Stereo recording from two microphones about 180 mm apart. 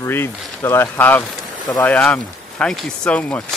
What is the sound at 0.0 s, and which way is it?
Speech, 15° left (ahead or behind).